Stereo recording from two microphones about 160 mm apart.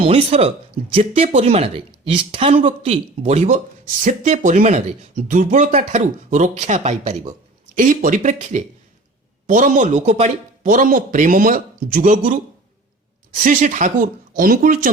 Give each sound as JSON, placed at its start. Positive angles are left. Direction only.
{"t": 0.0, "sound": "speech", "side_deg": -40}
{"t": 7.8, "sound": "speech", "side_deg": -55}
{"t": 13.4, "sound": "speech", "side_deg": -55}